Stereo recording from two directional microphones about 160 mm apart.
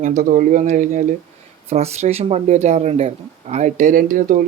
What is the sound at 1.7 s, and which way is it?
Speech, 40° right (ahead or behind).